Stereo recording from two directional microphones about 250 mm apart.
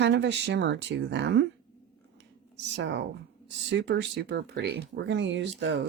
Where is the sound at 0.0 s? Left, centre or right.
Right.